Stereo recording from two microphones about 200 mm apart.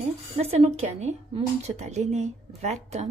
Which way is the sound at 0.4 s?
30° right (ahead or behind).